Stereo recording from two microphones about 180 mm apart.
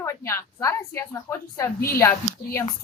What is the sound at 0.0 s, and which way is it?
Speech, 15° left (ahead or behind).